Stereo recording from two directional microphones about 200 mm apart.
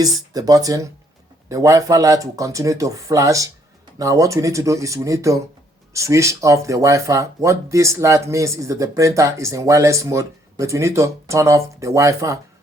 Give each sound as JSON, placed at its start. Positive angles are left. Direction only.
{"t": 0.0, "sound": "speech", "side_deg": -20}